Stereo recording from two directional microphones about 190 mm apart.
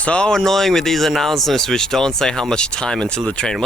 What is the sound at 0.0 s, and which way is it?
Speech, 5° left (ahead or behind).